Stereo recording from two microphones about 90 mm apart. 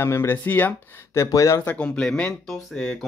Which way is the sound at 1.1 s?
35° left (ahead or behind).